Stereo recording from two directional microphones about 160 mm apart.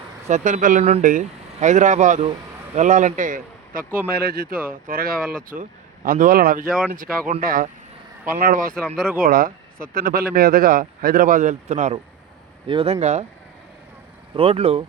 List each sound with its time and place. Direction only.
0.3 s speech: 45° right (ahead or behind)
4.1 s speech: 75° right (ahead or behind); by 11.9 s 50° right (ahead or behind)
12.6 s speech: 35° right (ahead or behind)
14.3 s speech: 35° right (ahead or behind)